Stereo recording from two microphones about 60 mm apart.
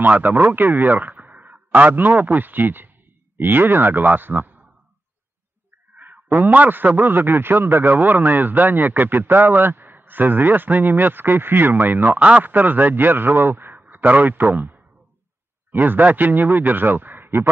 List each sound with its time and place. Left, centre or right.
0.0 s a man's voice: right
5.9 s a man's voice: right